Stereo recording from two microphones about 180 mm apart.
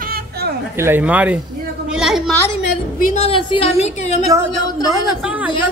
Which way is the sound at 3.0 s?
40° left (ahead or behind).